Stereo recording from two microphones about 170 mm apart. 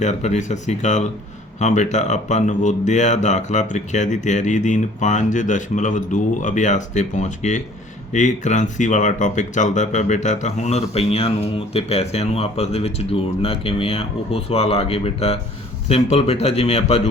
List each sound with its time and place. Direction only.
0.0 s speech: 40° left (ahead or behind)